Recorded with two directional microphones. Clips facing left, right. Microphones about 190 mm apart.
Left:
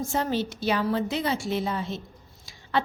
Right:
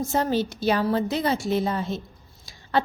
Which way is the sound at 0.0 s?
40° right (ahead or behind).